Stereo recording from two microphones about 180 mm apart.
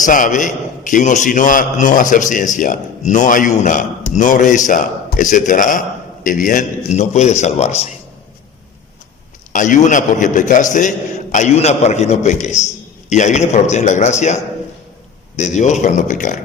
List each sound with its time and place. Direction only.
0.0 s a man's voice: 45° left (ahead or behind)
9.5 s a man's voice: 45° left (ahead or behind)